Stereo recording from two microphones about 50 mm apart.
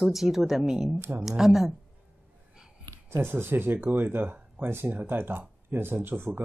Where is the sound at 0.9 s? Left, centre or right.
Right.